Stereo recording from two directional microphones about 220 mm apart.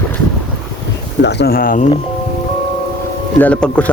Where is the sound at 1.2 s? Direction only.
50° left (ahead or behind).